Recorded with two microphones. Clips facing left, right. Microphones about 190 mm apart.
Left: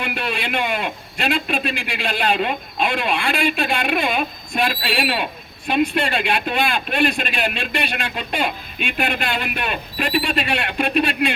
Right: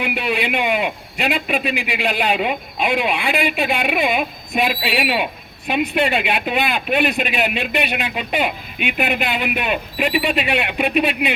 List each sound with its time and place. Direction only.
0.0 s a man's voice: 15° right (ahead or behind)